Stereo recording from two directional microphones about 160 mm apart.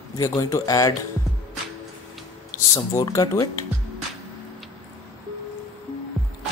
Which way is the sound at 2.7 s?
20° left (ahead or behind).